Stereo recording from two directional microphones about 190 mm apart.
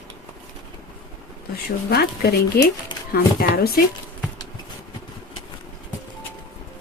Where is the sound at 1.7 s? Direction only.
55° left (ahead or behind).